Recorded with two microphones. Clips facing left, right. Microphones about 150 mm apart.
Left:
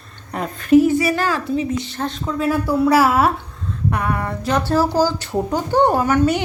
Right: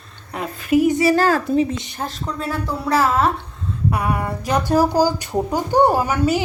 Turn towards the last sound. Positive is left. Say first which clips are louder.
# left 2 dB
turn(degrees=-5)  # may be behind; listen again after turning